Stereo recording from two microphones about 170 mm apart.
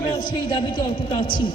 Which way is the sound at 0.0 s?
25° left (ahead or behind).